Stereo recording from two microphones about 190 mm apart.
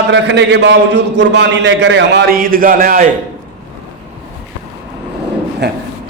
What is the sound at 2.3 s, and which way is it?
Speech, 50° right (ahead or behind).